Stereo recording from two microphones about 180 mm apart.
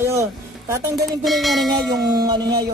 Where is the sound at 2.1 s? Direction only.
20° right (ahead or behind).